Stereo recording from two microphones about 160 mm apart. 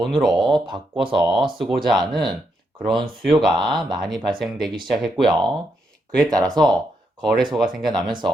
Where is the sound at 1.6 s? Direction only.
25° right (ahead or behind).